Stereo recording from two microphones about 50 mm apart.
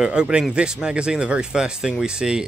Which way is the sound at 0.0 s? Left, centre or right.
Centre.